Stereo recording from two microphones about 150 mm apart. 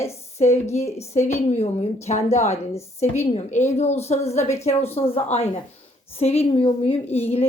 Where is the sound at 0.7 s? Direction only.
45° left (ahead or behind).